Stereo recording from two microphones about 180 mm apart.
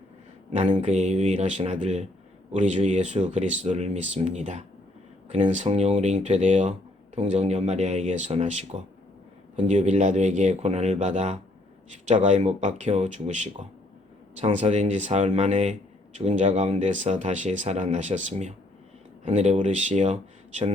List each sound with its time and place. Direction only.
0.5 s speech: 40° right (ahead or behind)